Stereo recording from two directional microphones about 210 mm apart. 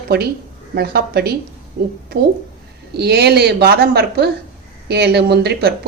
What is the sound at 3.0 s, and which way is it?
A woman's voice, 50° right (ahead or behind).